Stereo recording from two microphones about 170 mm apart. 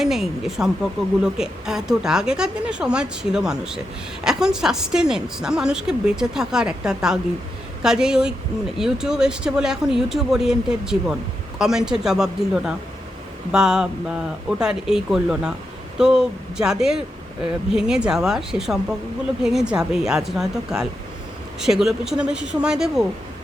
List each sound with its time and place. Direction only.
0.0 s a woman's voice: centre (ahead or behind)